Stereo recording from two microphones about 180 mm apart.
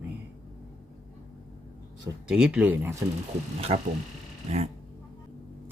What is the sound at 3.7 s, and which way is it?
Speech, 35° right (ahead or behind).